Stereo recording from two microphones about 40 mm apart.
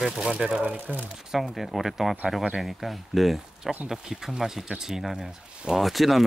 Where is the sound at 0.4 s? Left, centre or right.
Right.